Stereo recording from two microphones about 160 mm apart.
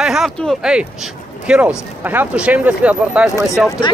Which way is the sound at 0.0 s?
5° right (ahead or behind).